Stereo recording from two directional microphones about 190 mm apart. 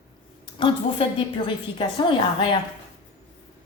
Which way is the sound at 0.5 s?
25° left (ahead or behind).